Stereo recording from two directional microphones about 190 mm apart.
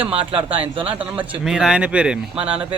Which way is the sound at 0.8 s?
10° right (ahead or behind).